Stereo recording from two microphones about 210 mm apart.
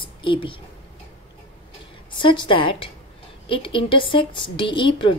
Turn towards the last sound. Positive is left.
turn(degrees=25)  # may be behind; listen again after turning